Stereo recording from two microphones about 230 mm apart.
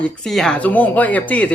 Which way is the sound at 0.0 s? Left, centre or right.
Centre.